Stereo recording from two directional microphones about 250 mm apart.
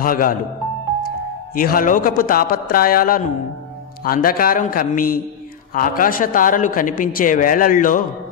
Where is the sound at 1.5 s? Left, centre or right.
Left.